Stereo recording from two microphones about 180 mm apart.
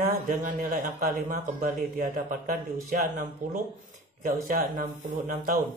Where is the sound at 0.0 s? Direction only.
45° right (ahead or behind).